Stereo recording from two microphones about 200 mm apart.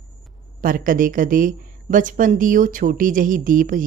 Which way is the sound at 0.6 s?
45° right (ahead or behind).